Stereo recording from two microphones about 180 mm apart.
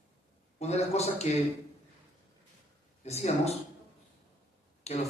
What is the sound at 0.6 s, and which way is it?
Speech, 35° left (ahead or behind).